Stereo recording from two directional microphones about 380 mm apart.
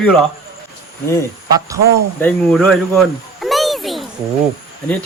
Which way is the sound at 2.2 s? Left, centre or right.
Centre.